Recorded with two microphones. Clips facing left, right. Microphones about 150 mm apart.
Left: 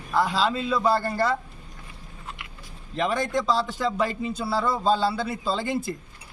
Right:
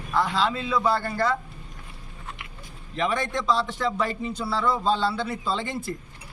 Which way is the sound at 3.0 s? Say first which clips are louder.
Left 1 dB; 10° left (ahead or behind).